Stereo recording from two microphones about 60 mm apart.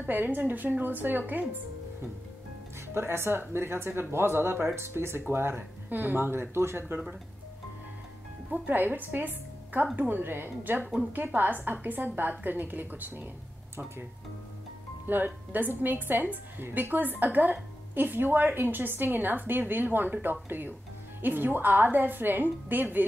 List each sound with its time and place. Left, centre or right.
0.0 s a woman's voice: right
2.9 s a woman's voice: right
8.5 s a woman's voice: right
15.0 s a woman's voice: right